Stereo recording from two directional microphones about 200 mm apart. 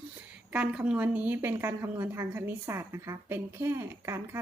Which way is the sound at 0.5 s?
5° right (ahead or behind).